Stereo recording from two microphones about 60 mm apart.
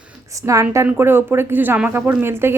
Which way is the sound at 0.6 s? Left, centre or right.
Right.